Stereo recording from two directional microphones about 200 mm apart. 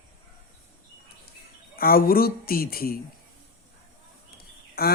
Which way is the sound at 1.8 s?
45° left (ahead or behind).